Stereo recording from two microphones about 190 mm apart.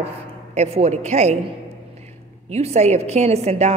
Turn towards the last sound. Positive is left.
turn(degrees=-35)  # may be behind; listen again after turning